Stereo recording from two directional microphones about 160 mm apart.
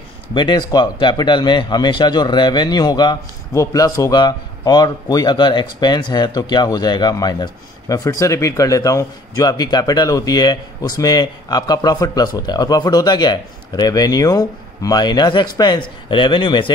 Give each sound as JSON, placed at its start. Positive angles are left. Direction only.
{"t": 0.3, "sound": "speech", "side_deg": 30}